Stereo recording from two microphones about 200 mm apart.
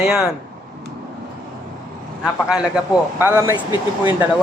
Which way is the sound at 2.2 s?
5° right (ahead or behind).